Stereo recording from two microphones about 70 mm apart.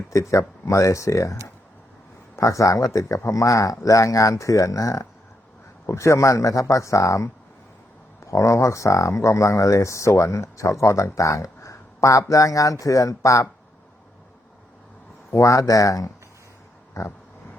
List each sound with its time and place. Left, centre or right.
0.1 s speech: left
15.4 s speech: left